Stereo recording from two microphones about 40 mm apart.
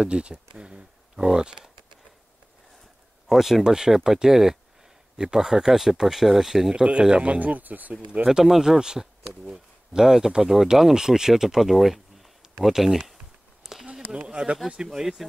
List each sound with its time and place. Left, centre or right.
0.0 s speech: right
3.3 s speech: centre
3.6 s speech: centre
6.7 s speech: right
8.3 s speech: centre
13.6 s a sound: centre
14.1 s speech: right
14.9 s speech: centre